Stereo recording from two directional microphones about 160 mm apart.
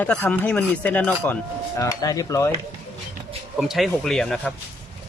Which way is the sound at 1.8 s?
20° left (ahead or behind).